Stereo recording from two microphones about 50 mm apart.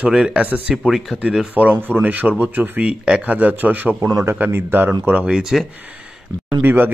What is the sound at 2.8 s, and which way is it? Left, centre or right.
Speech, right.